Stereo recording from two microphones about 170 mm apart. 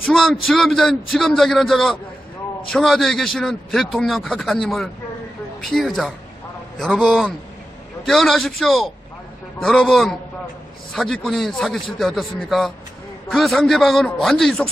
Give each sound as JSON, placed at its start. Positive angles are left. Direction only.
{"t": 0.1, "sound": "a man's voice", "side_deg": 0}